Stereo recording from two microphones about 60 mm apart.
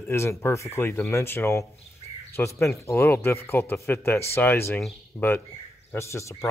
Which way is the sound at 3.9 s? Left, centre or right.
Left.